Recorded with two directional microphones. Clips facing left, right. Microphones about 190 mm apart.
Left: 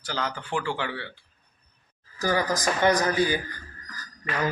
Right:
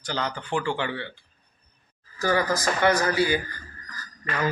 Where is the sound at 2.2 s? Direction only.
15° left (ahead or behind).